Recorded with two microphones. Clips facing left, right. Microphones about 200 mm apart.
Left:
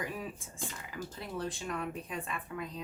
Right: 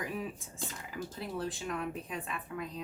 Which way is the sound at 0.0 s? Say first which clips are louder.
Right 1 dB; centre (ahead or behind).